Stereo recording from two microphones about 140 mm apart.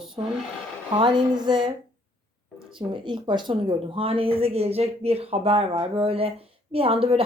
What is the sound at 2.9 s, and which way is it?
Speech, 35° right (ahead or behind).